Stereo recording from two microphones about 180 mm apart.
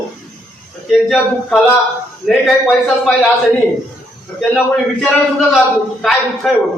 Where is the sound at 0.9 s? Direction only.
5° left (ahead or behind).